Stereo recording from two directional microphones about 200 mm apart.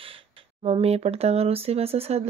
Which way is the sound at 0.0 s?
30° right (ahead or behind).